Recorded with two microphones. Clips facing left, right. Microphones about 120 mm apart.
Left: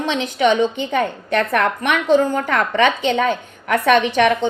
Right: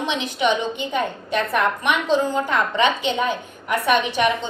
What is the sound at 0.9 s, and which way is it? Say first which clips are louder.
A woman's voice: left 2 dB; 65° left (ahead or behind).